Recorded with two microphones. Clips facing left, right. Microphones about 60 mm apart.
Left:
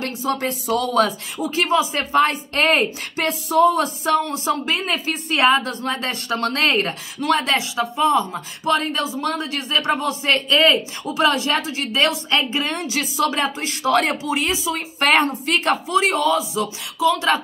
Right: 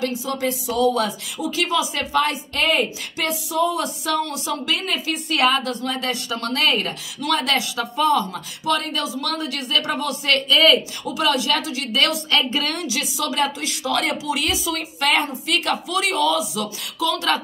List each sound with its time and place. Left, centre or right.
0.0 s speech: left
1.0 s speech: left
15.0 s speech: left